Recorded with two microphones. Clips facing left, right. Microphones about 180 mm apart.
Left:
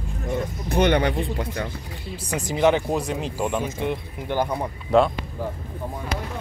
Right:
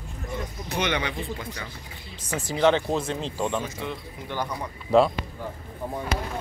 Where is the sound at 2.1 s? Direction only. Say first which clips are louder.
Left 2 dB; 15° left (ahead or behind).